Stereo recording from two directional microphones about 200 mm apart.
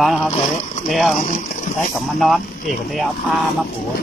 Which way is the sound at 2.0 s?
Centre (ahead or behind).